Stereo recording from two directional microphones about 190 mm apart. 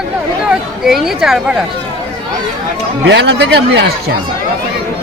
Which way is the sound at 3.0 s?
65° right (ahead or behind).